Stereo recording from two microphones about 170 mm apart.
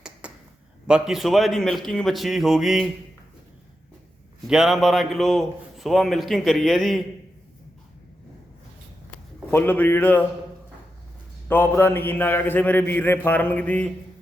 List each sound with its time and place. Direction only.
0.2 s a sound: 5° right (ahead or behind)
0.9 s a man's voice: 5° right (ahead or behind)
4.4 s a man's voice: centre (ahead or behind)
9.5 s a man's voice: 10° left (ahead or behind)
11.4 s a man's voice: 10° left (ahead or behind)